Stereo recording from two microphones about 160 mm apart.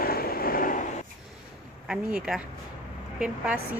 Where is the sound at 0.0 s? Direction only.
70° left (ahead or behind).